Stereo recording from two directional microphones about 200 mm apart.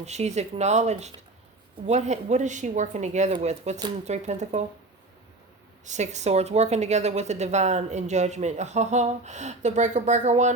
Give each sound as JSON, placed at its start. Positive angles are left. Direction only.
{"t": 0.0, "sound": "speech", "side_deg": -35}
{"t": 5.8, "sound": "speech", "side_deg": -35}